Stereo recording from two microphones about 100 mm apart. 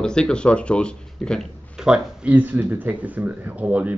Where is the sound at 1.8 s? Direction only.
5° right (ahead or behind).